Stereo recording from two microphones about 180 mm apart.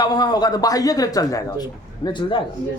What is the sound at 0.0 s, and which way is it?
Speech, 20° left (ahead or behind).